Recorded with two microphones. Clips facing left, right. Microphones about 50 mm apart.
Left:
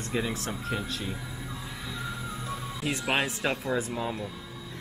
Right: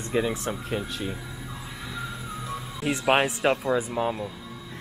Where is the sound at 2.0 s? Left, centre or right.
Centre.